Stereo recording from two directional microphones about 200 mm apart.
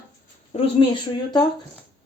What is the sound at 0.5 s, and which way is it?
Speech, 30° left (ahead or behind).